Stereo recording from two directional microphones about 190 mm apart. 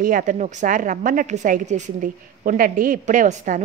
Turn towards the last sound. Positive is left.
turn(degrees=-40)  # may be behind; listen again after turning